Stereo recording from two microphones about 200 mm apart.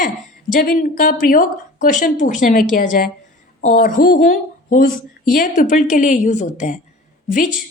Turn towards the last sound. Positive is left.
turn(degrees=40)  # may be behind; listen again after turning